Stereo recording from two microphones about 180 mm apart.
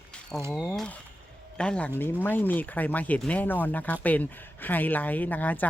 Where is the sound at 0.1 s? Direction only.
5° left (ahead or behind).